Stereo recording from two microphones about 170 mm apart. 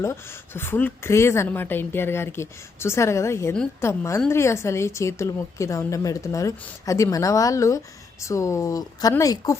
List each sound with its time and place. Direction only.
0.0 s a woman's voice: 15° left (ahead or behind)